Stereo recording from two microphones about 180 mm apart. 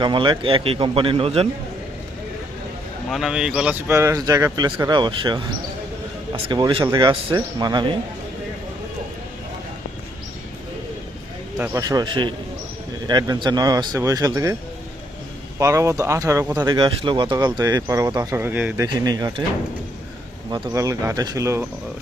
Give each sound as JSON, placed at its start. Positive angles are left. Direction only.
{"t": 0.0, "sound": "speech", "side_deg": -25}
{"t": 3.1, "sound": "speech", "side_deg": 0}
{"t": 11.5, "sound": "speech", "side_deg": -10}
{"t": 11.8, "sound": "speech", "side_deg": -20}
{"t": 15.5, "sound": "speech", "side_deg": -15}
{"t": 18.9, "sound": "speech", "side_deg": -20}
{"t": 20.5, "sound": "speech", "side_deg": -20}